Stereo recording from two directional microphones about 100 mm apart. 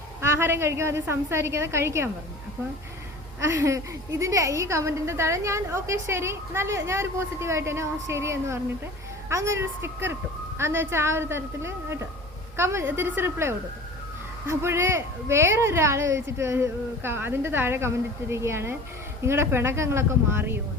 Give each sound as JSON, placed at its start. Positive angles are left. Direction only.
{"t": 0.2, "sound": "a woman's voice", "side_deg": -25}
{"t": 3.4, "sound": "a woman's voice", "side_deg": -30}